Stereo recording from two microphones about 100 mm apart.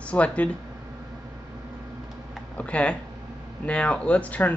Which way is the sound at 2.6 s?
10° left (ahead or behind).